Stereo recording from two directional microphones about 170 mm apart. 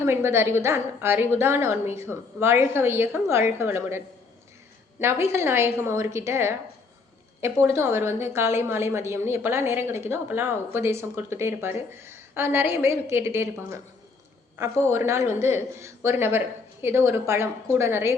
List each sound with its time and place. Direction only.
0.0 s a woman's voice: 15° right (ahead or behind)
5.2 s a woman's voice: 15° right (ahead or behind)
14.9 s a woman's voice: 15° right (ahead or behind)